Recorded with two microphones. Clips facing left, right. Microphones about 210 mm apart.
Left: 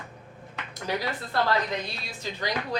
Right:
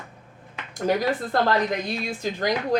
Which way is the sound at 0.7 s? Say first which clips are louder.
Right 8 dB; 50° right (ahead or behind).